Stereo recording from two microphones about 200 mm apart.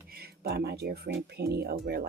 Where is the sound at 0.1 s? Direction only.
50° right (ahead or behind).